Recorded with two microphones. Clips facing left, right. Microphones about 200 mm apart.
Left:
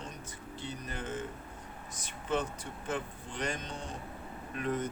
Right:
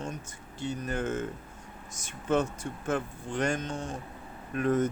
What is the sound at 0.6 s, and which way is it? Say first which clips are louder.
Speech: right 9 dB; 45° right (ahead or behind).